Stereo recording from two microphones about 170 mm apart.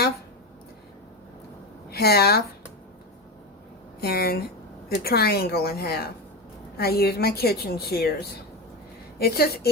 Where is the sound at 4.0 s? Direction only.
65° left (ahead or behind).